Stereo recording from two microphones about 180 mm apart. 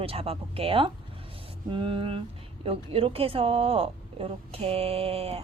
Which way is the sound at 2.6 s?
30° right (ahead or behind).